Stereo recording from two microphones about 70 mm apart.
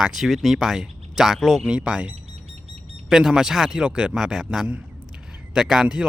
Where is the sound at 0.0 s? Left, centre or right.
Centre.